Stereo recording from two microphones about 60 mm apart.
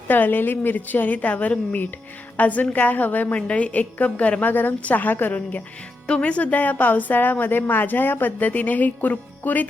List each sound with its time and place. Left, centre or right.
0.1 s a woman's voice: left
6.1 s a woman's voice: centre